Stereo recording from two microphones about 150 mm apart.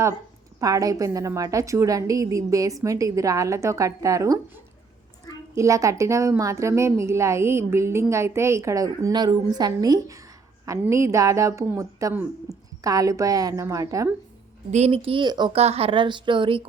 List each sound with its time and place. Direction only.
0.6 s a woman's voice: 25° right (ahead or behind)
14.7 s a woman's voice: 45° right (ahead or behind)
15.5 s a woman's voice: 45° right (ahead or behind)